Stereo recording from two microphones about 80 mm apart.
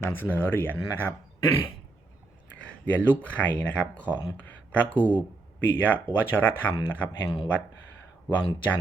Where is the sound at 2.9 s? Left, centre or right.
Centre.